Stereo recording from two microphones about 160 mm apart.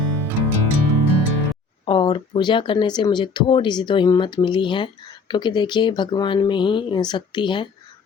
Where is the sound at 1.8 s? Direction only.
30° left (ahead or behind).